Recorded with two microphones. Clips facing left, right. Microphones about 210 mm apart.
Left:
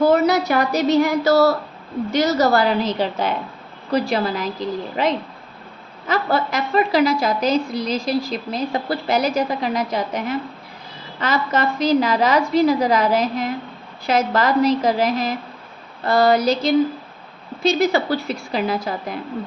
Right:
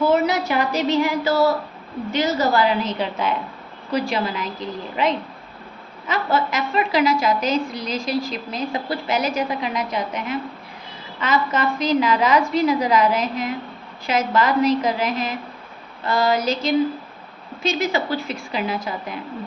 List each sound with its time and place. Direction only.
0.0 s a woman's voice: 40° left (ahead or behind)
1.3 s speech: 75° left (ahead or behind)
2.0 s a woman's voice: 40° left (ahead or behind)
6.1 s a woman's voice: 35° left (ahead or behind)